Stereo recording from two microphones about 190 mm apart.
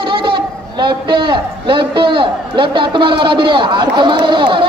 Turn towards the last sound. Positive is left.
turn(degrees=-25)  # may be behind; listen again after turning